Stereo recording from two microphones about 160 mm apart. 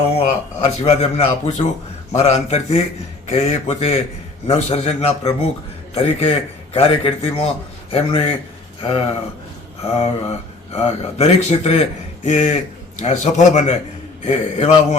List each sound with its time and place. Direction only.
0.0 s speech: 40° left (ahead or behind)
9.8 s speech: 40° left (ahead or behind)